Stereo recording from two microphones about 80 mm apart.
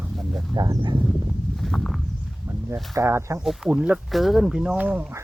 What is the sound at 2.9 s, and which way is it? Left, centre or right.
Speech, right.